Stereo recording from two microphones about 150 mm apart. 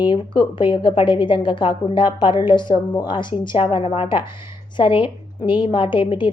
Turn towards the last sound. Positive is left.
turn(degrees=35)  # may be behind; listen again after turning